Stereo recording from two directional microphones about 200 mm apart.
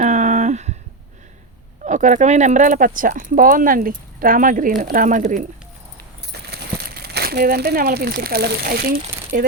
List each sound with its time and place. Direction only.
0.0 s a sound: 35° right (ahead or behind)
1.8 s speech: 40° right (ahead or behind)
6.5 s speech: 50° right (ahead or behind)